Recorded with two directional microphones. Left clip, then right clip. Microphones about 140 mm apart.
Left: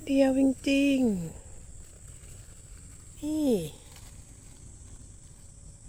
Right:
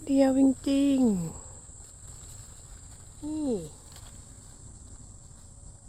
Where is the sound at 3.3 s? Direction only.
35° left (ahead or behind).